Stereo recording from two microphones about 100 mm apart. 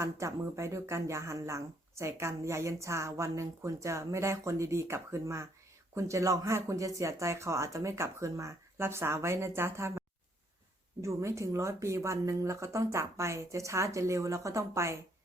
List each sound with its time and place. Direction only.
0.0 s speech: 30° right (ahead or behind)
11.0 s speech: 30° right (ahead or behind)